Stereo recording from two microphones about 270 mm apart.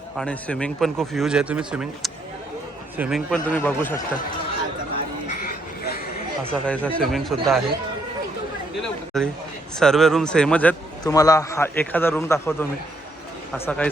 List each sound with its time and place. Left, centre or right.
0.2 s speech: centre
5.3 s a sound: left
6.7 s speech: centre
9.2 s a man's voice: centre